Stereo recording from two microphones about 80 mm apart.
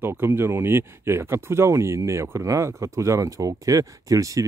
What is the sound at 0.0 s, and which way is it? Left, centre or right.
Speech, right.